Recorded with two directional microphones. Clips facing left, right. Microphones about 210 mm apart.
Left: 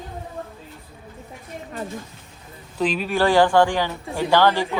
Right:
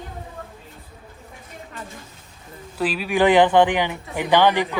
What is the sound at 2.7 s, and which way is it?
Speech, 5° right (ahead or behind).